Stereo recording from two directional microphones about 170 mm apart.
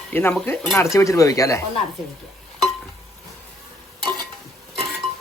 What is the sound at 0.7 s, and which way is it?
Speech, 20° left (ahead or behind).